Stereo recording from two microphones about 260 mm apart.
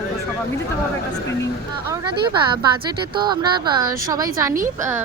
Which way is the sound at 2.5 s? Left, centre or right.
Centre.